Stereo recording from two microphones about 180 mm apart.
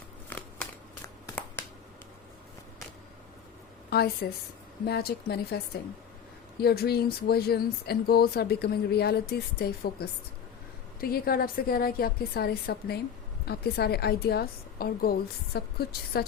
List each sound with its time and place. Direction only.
0.3 s a sound: 10° left (ahead or behind)
3.8 s a woman's voice: 60° left (ahead or behind)
6.6 s speech: 60° left (ahead or behind)